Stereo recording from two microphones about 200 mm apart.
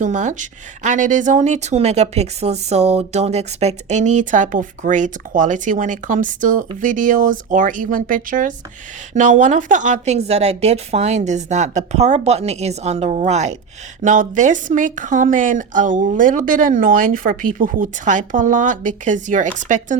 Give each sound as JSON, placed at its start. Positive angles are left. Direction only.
{"t": 0.0, "sound": "speech", "side_deg": -40}